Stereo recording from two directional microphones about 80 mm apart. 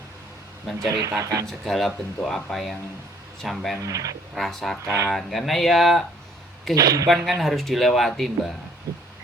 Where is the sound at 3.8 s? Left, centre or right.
Right.